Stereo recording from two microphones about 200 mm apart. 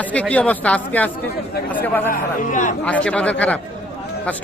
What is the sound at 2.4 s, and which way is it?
Speech, 40° left (ahead or behind).